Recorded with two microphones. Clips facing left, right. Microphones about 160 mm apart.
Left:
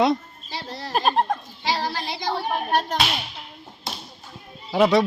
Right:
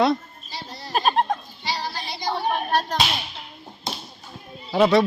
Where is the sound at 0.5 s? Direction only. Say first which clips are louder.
Left 4 dB; 90° left.